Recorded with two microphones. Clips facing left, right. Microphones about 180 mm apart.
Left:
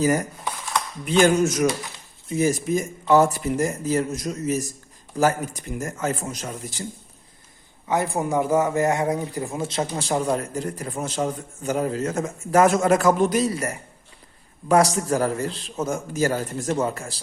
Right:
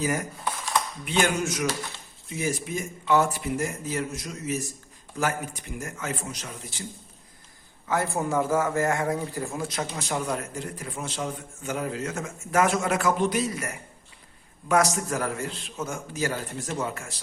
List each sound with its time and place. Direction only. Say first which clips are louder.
1.2 s a man's voice: left 8 dB; 45° left (ahead or behind)
7.9 s a man's voice: left 3 dB; 15° left (ahead or behind); by 17.2 s 35° left (ahead or behind)